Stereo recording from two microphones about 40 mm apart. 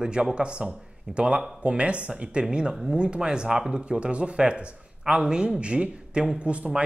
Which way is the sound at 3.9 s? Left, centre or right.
Right.